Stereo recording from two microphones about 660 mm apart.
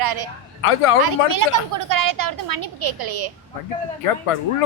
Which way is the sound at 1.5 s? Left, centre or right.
Right.